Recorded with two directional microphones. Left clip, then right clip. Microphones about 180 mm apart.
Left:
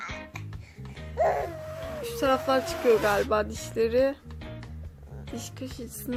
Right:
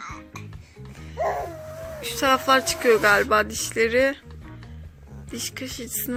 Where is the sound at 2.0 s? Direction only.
Centre (ahead or behind).